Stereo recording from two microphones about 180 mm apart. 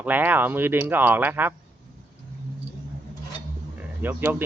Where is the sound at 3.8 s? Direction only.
10° right (ahead or behind).